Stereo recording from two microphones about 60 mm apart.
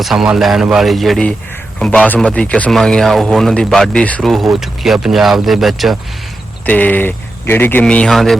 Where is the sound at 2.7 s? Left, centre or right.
Centre.